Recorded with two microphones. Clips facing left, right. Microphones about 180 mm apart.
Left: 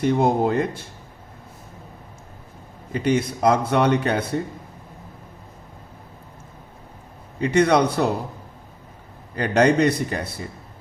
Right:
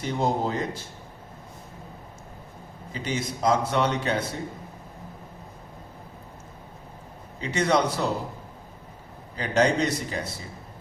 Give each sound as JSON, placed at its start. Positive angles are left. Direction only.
{"t": 0.0, "sound": "a man's voice", "side_deg": 60}
{"t": 2.9, "sound": "a man's voice", "side_deg": 60}
{"t": 7.3, "sound": "a man's voice", "side_deg": 60}
{"t": 9.3, "sound": "a man's voice", "side_deg": 60}